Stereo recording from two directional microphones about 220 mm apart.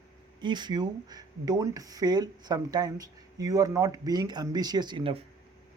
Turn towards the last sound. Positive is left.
turn(degrees=-25)  # may be behind; listen again after turning